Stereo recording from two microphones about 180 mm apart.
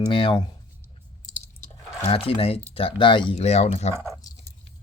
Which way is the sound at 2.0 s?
30° left (ahead or behind).